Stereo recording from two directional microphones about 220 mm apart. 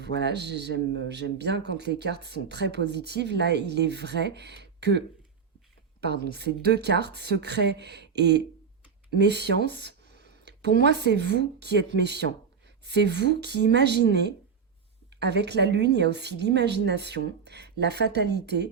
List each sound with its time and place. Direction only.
0.0 s speech: 50° right (ahead or behind)
9.6 s a sound: 50° right (ahead or behind)
10.8 s speech: 50° right (ahead or behind)